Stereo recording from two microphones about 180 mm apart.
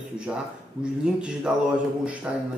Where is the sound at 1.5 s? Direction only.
5° right (ahead or behind).